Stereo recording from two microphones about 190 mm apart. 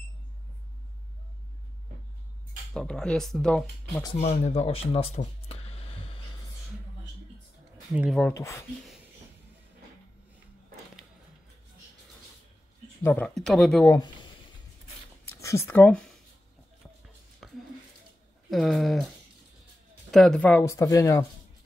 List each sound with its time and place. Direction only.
2.7 s speech: 5° left (ahead or behind)
4.2 s speech: 35° left (ahead or behind)
7.9 s speech: 5° right (ahead or behind)
8.2 s speech: 15° left (ahead or behind)
13.0 s speech: 10° left (ahead or behind)
15.2 s speech: 15° left (ahead or behind)
17.4 s a sound: centre (ahead or behind)
18.5 s speech: centre (ahead or behind)
20.1 s speech: centre (ahead or behind)